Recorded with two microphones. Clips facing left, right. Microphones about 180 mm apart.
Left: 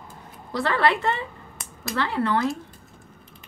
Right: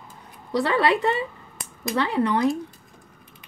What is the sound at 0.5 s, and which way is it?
Speech, 15° right (ahead or behind).